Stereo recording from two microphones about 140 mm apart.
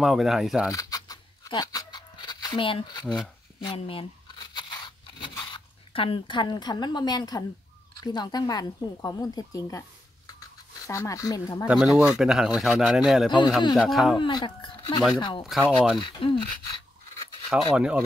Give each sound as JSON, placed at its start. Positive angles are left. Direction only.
{"t": 0.0, "sound": "speech", "side_deg": 0}
{"t": 0.7, "sound": "a sound", "side_deg": 25}
{"t": 3.6, "sound": "speech", "side_deg": 40}
{"t": 4.4, "sound": "crunch", "side_deg": 30}
{"t": 8.0, "sound": "a woman's voice", "side_deg": 30}
{"t": 11.6, "sound": "speech", "side_deg": 0}
{"t": 14.1, "sound": "speech", "side_deg": 35}
{"t": 15.7, "sound": "speech", "side_deg": -5}
{"t": 16.0, "sound": "speech", "side_deg": 35}
{"t": 17.5, "sound": "speech", "side_deg": -5}